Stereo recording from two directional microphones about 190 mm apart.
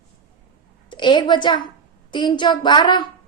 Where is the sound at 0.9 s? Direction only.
25° left (ahead or behind).